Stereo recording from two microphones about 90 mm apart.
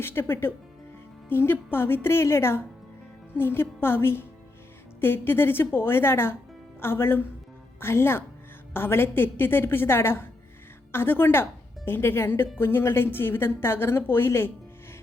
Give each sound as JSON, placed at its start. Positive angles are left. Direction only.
{"t": 0.0, "sound": "a woman's voice", "side_deg": 25}